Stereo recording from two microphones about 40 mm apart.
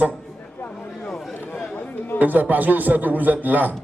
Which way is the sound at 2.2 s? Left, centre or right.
Right.